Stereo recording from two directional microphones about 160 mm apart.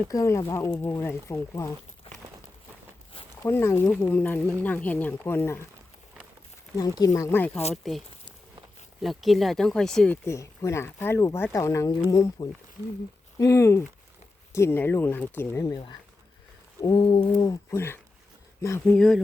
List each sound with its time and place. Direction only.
0.1 s speech: 20° left (ahead or behind)
3.4 s speech: 15° left (ahead or behind)
6.7 s speech: 25° left (ahead or behind)
9.0 s speech: centre (ahead or behind)
10.2 s speech: 20° left (ahead or behind)
16.8 s a sound: 30° left (ahead or behind)
17.4 s speech: 20° left (ahead or behind)
18.9 s speech: 5° left (ahead or behind)